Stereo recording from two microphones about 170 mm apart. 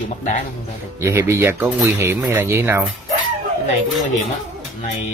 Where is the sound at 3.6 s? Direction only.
45° left (ahead or behind).